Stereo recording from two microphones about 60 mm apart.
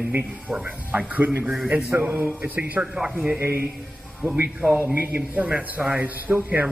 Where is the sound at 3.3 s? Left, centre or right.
Right.